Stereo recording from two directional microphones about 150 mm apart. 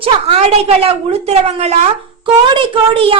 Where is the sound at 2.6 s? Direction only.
35° right (ahead or behind).